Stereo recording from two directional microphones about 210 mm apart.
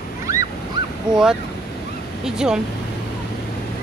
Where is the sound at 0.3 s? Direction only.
15° right (ahead or behind).